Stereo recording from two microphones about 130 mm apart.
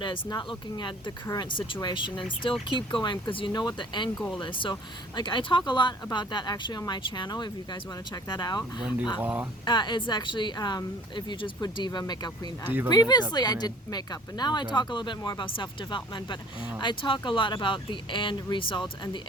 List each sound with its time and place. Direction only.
0.0 s speech: 35° left (ahead or behind)
9.2 s speech: 15° right (ahead or behind)
9.6 s speech: 35° left (ahead or behind)